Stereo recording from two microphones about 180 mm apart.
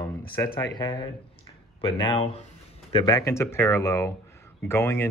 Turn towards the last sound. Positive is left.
turn(degrees=15)  # may be behind; listen again after turning